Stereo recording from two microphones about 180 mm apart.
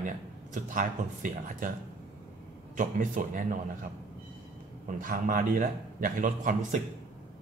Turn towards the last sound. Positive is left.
turn(degrees=-45)  # may be behind; listen again after turning